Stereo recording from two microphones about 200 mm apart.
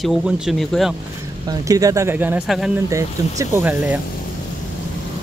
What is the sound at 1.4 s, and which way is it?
Speech, 15° right (ahead or behind).